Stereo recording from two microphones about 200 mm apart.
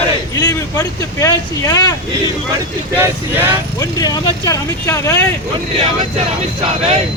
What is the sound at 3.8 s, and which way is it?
Speech, 20° left (ahead or behind).